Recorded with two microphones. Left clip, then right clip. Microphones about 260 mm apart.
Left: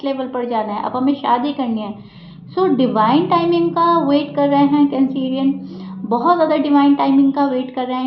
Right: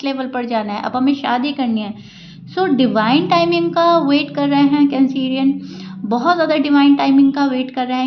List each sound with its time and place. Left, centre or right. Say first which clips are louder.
0.0 s speech: even; right